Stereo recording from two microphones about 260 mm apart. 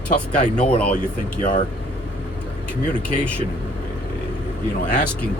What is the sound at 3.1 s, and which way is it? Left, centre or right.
Speech, centre.